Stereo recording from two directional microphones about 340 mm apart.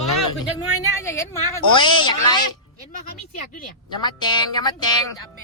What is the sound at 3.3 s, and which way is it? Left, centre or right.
Speech, centre.